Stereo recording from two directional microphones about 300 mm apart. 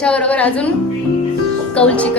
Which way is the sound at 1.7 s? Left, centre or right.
Centre.